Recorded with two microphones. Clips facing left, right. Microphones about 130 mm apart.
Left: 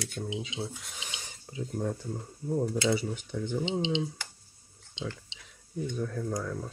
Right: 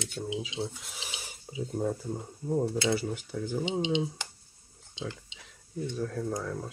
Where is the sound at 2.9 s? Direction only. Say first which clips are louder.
Even; 5° right (ahead or behind).